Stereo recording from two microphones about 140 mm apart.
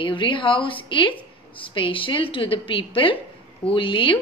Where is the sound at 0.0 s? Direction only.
35° left (ahead or behind).